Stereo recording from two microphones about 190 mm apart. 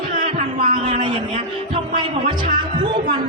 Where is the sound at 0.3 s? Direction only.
35° right (ahead or behind).